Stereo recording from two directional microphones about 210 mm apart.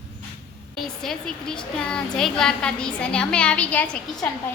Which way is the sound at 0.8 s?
Centre (ahead or behind).